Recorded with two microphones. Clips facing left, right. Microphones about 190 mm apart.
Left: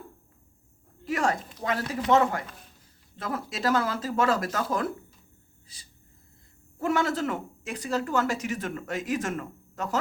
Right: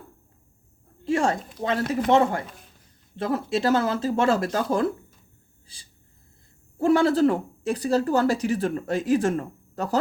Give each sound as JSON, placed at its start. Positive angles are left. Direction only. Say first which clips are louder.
{"t": 1.0, "sound": "speech", "louder": "right 4 dB", "side_deg": -25}